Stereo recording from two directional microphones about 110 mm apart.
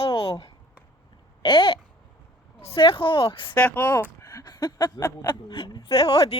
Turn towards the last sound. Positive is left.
turn(degrees=60)  # may be behind; listen again after turning